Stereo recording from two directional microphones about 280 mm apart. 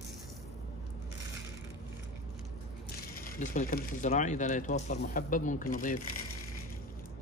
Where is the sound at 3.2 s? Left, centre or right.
Left.